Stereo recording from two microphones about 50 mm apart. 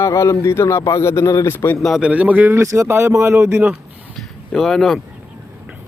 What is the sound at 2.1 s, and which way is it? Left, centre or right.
Speech, right.